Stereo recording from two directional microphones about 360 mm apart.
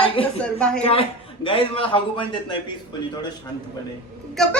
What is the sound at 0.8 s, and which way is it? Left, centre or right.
A man's voice, centre.